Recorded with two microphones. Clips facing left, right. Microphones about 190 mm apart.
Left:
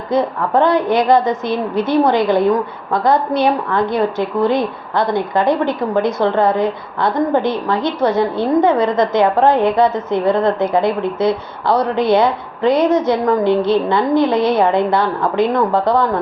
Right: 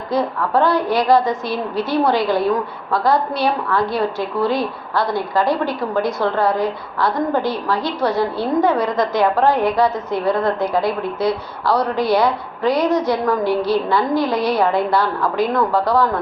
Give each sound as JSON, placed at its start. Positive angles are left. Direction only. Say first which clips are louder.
{"t": 0.1, "sound": "a woman's voice", "louder": "left 3 dB", "side_deg": 20}